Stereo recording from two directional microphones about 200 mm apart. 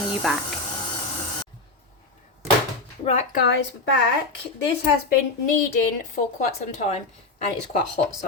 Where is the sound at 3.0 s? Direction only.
35° left (ahead or behind).